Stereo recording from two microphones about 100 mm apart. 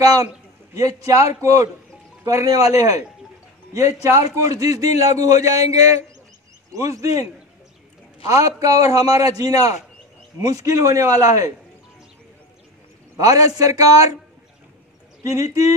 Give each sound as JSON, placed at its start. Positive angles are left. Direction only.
{"t": 0.0, "sound": "a man's voice", "side_deg": -35}
{"t": 8.3, "sound": "a man's voice", "side_deg": -35}
{"t": 13.1, "sound": "a man's voice", "side_deg": -35}
{"t": 15.2, "sound": "a man's voice", "side_deg": -35}